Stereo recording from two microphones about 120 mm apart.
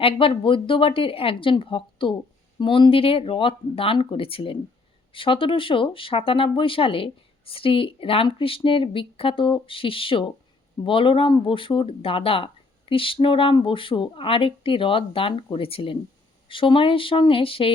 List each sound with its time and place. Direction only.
0.0 s speech: 50° left (ahead or behind)